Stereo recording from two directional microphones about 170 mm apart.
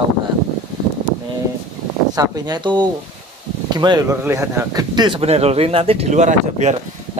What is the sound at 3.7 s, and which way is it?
Speech, 25° right (ahead or behind).